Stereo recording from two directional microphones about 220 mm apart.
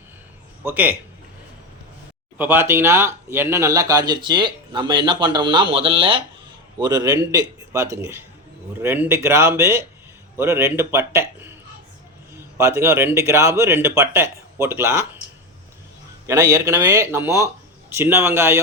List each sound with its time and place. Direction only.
0.6 s speech: 10° right (ahead or behind)
2.4 s speech: 10° right (ahead or behind)
16.2 s speech: 15° right (ahead or behind)